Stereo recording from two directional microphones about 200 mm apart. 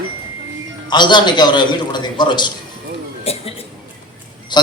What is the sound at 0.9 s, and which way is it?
A man's voice, 20° left (ahead or behind).